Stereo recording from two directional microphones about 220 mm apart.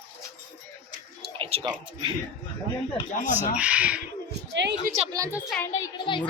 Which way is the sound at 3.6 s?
5° right (ahead or behind).